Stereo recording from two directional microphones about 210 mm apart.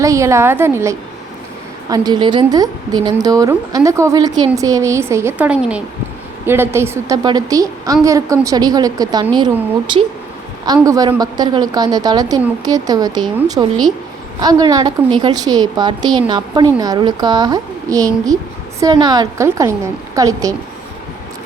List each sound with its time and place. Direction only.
0.0 s a woman's voice: 15° right (ahead or behind)
10.8 s a woman's voice: 15° right (ahead or behind)